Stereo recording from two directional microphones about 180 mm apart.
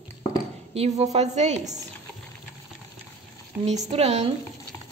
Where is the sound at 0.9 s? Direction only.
40° right (ahead or behind).